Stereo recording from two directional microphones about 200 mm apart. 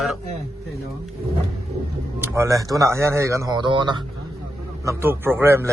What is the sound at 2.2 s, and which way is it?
Speech, 15° right (ahead or behind).